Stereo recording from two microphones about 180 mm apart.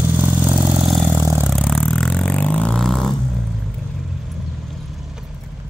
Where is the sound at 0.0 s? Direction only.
10° right (ahead or behind).